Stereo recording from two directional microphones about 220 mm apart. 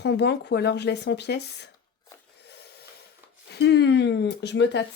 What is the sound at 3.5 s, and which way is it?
Speech, 50° left (ahead or behind).